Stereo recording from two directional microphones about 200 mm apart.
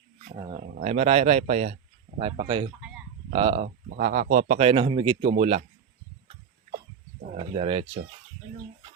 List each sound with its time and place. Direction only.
0.3 s speech: 25° right (ahead or behind)
3.8 s speech: 45° right (ahead or behind)
7.3 s speech: 25° right (ahead or behind)